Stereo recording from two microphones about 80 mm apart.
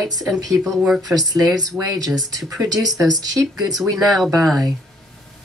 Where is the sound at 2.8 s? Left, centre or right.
Right.